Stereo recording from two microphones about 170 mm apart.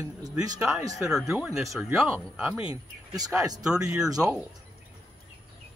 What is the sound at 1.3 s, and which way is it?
Speech, 15° right (ahead or behind).